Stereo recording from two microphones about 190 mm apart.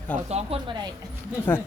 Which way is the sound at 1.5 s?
10° left (ahead or behind).